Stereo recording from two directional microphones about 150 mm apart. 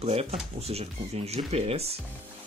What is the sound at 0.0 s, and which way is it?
Speech, 45° right (ahead or behind).